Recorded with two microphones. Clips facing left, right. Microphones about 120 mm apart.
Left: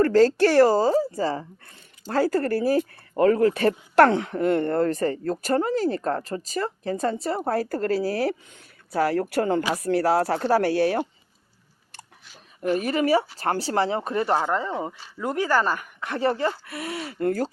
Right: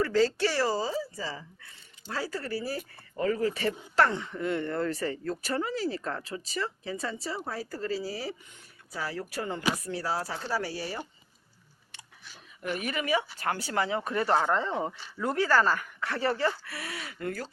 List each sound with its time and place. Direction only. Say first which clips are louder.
0.0 s a woman's voice: left 8 dB; 50° left (ahead or behind); by 11.0 s 65° left (ahead or behind)
12.6 s speech: left 9 dB; 35° left (ahead or behind); by 14.4 s 20° left (ahead or behind)
14.4 s speech: left 2 dB; 10° left (ahead or behind); by 17.5 s 40° left (ahead or behind)